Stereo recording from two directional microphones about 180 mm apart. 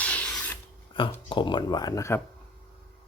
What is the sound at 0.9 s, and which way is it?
Speech, 25° left (ahead or behind).